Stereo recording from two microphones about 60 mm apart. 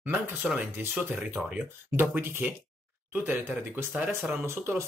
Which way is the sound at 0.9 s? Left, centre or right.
Right.